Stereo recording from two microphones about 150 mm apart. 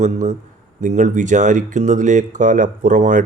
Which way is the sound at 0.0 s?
55° right (ahead or behind).